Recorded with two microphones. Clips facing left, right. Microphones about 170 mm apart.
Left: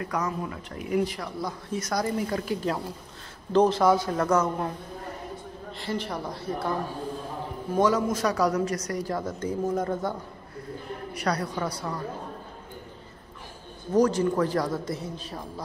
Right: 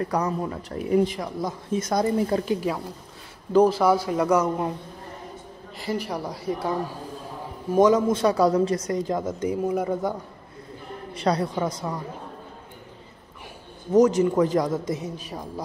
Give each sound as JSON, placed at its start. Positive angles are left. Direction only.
{"t": 0.0, "sound": "speech", "side_deg": -35}
{"t": 2.6, "sound": "a man's voice", "side_deg": 0}
{"t": 5.9, "sound": "a man's voice", "side_deg": -10}
{"t": 7.8, "sound": "speech", "side_deg": -25}
{"t": 11.1, "sound": "speech", "side_deg": -25}
{"t": 13.9, "sound": "a man's voice", "side_deg": -20}